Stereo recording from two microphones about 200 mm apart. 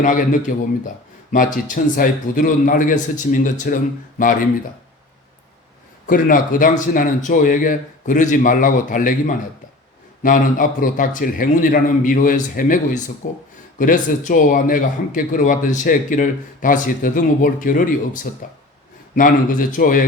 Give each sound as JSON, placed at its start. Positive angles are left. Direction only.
{"t": 0.0, "sound": "a man's voice", "side_deg": 40}
{"t": 6.1, "sound": "a man's voice", "side_deg": 45}